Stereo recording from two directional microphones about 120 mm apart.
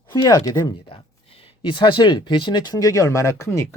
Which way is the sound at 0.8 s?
50° left (ahead or behind).